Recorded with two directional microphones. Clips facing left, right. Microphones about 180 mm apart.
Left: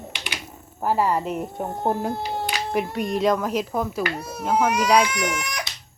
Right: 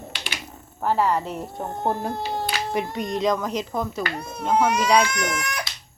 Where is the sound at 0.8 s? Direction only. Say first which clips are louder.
Even; 5° left (ahead or behind).